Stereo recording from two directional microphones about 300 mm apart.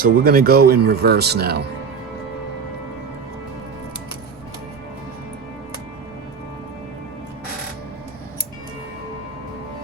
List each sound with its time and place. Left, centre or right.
0.0 s speech: right